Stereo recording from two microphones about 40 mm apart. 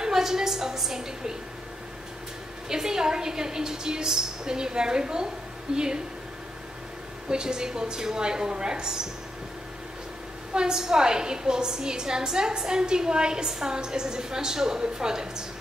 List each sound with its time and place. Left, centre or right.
0.0 s a sound: centre
2.7 s a woman's voice: centre
7.2 s a woman's voice: centre
10.5 s a woman's voice: centre